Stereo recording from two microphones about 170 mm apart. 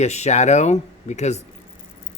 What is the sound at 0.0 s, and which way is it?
Speech, 40° left (ahead or behind).